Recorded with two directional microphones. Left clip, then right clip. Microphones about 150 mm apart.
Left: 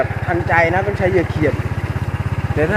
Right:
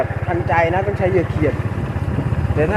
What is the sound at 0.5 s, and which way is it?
Speech, 5° left (ahead or behind).